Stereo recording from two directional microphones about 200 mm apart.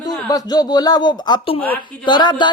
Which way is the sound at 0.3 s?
20° left (ahead or behind).